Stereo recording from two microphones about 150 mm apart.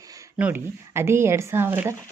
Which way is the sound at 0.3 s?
15° right (ahead or behind).